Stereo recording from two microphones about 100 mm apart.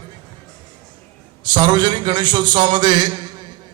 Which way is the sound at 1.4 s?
50° right (ahead or behind).